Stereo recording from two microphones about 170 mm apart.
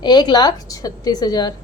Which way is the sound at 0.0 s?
25° left (ahead or behind).